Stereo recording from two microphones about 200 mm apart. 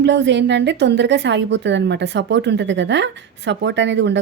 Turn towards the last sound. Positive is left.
turn(degrees=-60)  # may be behind; listen again after turning